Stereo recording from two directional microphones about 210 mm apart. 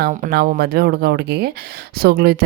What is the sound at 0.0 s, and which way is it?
Speech, 45° right (ahead or behind).